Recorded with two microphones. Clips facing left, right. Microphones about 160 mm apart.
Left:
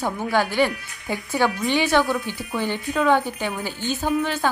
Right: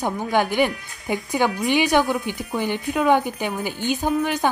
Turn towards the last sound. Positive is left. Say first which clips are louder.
# right 1 dB
turn(degrees=-15)  # may be behind; listen again after turning